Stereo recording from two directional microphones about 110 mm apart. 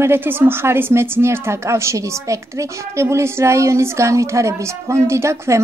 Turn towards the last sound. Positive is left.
turn(degrees=-25)  # may be behind; listen again after turning